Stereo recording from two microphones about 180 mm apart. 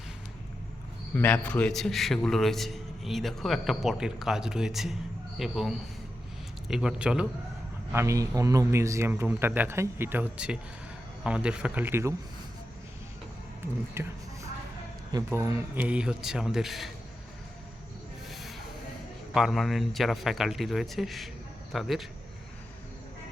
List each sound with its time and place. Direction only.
1.1 s a man's voice: 10° left (ahead or behind)
7.9 s speech: 15° right (ahead or behind)
13.9 s a sound: 15° right (ahead or behind)
15.3 s a man's voice: 15° right (ahead or behind)
19.3 s a man's voice: centre (ahead or behind)